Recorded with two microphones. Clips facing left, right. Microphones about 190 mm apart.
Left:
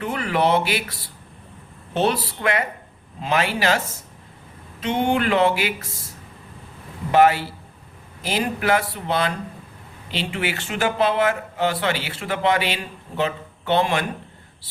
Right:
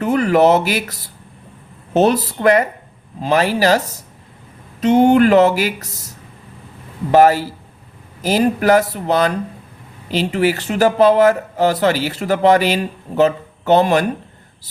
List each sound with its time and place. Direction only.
0.0 s speech: 45° right (ahead or behind)
7.1 s speech: 40° right (ahead or behind)